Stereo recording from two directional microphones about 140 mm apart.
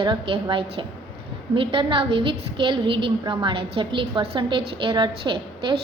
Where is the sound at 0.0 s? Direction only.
35° right (ahead or behind).